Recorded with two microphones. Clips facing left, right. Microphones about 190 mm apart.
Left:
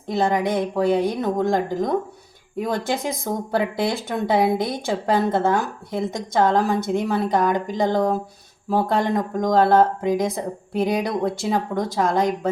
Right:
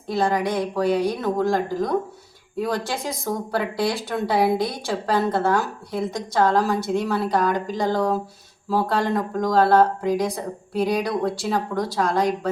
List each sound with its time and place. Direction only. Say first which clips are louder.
0.1 s speech: left 1 dB; 20° left (ahead or behind)